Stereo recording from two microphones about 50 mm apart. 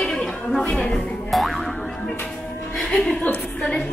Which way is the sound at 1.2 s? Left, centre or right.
Centre.